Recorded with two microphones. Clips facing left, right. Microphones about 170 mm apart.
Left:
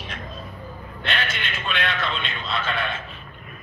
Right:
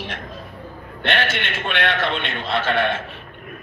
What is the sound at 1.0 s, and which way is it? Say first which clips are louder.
A man's voice: right 6 dB; 65° right (ahead or behind).